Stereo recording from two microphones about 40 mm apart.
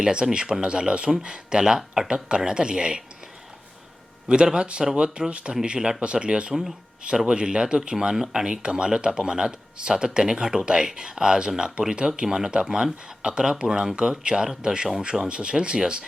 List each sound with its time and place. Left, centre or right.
0.0 s speech: centre
4.5 s speech: right